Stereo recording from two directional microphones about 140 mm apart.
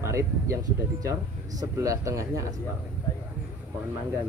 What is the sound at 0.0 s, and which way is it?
Speech, 20° right (ahead or behind).